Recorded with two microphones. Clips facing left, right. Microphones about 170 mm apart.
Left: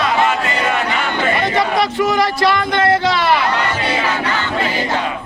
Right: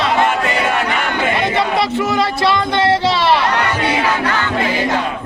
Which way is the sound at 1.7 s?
25° right (ahead or behind).